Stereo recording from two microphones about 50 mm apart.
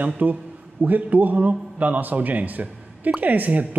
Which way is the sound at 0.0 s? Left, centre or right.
Right.